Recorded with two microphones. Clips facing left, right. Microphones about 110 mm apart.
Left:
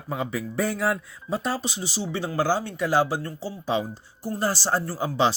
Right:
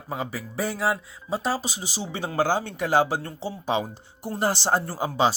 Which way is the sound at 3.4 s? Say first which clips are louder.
Even; 20° right (ahead or behind).